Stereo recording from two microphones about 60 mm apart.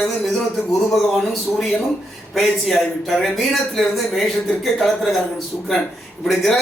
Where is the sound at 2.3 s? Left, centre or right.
Centre.